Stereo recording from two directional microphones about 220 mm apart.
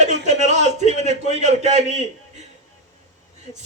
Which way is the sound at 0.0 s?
30° right (ahead or behind).